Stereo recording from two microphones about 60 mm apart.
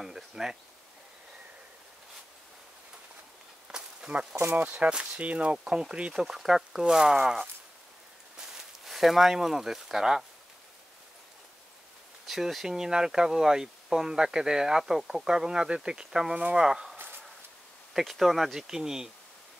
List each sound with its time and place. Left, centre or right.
0.0 s speech: centre
3.6 s walk: centre
4.1 s speech: centre
12.3 s speech: centre
16.9 s a sound: right
17.9 s speech: centre